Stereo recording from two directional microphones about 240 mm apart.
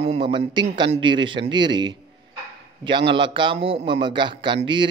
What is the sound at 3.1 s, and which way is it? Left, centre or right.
Speech, centre.